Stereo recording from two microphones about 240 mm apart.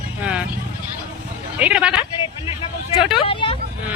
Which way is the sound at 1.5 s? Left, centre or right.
Centre.